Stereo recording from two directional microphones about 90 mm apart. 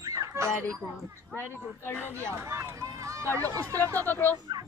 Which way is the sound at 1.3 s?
25° left (ahead or behind).